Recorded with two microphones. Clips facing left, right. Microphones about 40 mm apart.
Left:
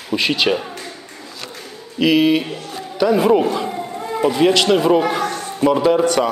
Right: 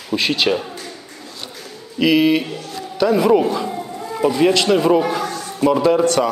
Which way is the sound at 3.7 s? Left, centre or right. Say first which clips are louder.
Left 2 dB; left.